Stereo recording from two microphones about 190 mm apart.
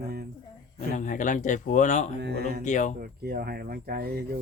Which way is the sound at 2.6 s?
40° left (ahead or behind).